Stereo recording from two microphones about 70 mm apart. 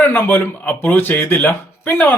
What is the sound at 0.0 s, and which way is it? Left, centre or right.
Speech, left.